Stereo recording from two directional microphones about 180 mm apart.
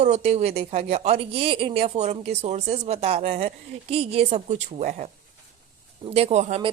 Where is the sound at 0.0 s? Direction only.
40° right (ahead or behind).